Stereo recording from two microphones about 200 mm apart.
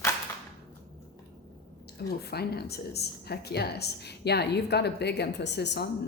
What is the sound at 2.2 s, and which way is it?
A woman's voice, 55° left (ahead or behind).